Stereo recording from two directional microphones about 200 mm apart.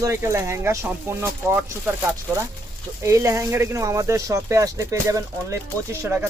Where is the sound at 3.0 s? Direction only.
15° right (ahead or behind).